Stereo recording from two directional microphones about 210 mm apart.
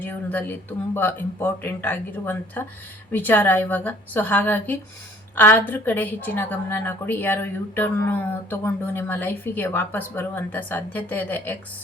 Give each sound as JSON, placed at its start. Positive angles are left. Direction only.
{"t": 0.0, "sound": "speech", "side_deg": 10}